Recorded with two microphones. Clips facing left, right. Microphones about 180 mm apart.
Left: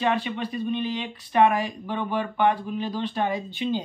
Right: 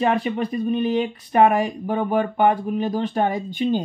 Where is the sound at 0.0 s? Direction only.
45° right (ahead or behind).